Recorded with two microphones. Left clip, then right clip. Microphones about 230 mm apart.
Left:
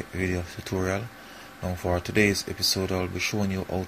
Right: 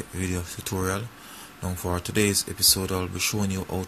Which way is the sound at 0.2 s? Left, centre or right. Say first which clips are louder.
Left 2 dB; centre.